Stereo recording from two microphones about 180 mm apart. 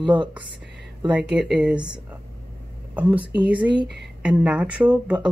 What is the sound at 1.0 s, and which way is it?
Speech, 5° right (ahead or behind).